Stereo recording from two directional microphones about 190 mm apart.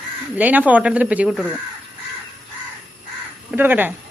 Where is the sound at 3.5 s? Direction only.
10° right (ahead or behind).